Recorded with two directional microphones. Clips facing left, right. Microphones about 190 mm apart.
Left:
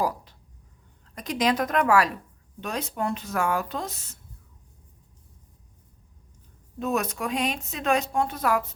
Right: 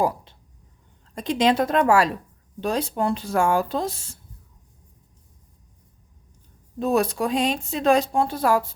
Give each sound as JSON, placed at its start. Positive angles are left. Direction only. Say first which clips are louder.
{"t": 1.1, "sound": "a woman's voice", "louder": "right 5 dB", "side_deg": -25}
{"t": 6.7, "sound": "speech", "louder": "right 6 dB", "side_deg": -35}